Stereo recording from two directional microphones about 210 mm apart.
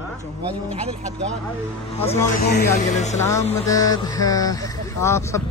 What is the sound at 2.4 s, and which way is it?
Speech, 50° left (ahead or behind).